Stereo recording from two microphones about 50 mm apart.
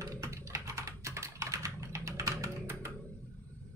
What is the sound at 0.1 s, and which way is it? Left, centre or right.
Typing, right.